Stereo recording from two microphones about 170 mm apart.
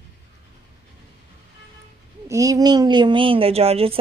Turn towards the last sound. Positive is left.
turn(degrees=-35)  # may be behind; listen again after turning